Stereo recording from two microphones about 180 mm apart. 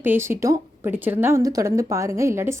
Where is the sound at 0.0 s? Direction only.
10° right (ahead or behind).